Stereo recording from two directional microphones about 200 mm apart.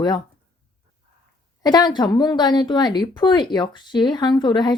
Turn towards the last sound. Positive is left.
turn(degrees=20)  # may be behind; listen again after turning